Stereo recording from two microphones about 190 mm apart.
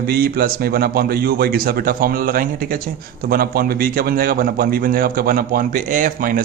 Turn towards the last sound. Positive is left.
turn(degrees=-45)  # may be behind; listen again after turning